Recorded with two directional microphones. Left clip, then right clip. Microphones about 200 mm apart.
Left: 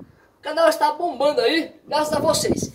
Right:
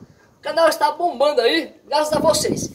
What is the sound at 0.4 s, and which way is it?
Speech, centre (ahead or behind).